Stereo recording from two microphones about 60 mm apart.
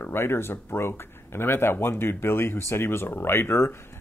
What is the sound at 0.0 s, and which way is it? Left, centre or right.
Speech, left.